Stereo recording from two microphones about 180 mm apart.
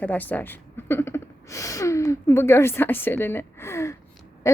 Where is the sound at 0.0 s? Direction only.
10° left (ahead or behind).